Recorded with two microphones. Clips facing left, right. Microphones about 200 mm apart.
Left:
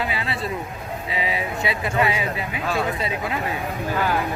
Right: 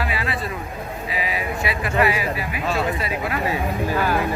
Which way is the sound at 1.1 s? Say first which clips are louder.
Left 1 dB; 25° left (ahead or behind).